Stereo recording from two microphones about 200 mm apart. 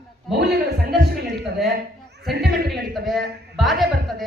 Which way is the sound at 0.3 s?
55° right (ahead or behind).